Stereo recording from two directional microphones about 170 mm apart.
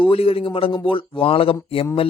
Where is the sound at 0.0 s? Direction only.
35° left (ahead or behind).